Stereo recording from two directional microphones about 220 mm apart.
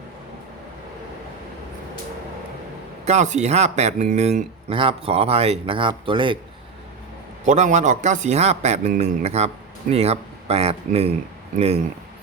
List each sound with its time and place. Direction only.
3.1 s speech: 30° right (ahead or behind)
7.4 s a man's voice: 30° right (ahead or behind)